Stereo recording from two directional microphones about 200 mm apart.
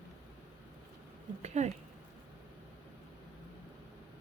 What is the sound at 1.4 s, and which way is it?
Speech, 35° right (ahead or behind).